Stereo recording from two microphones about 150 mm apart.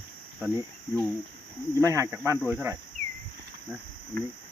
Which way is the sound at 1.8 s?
20° right (ahead or behind).